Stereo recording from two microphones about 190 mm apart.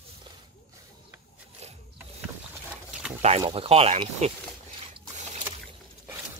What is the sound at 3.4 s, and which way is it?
Speech, 30° right (ahead or behind).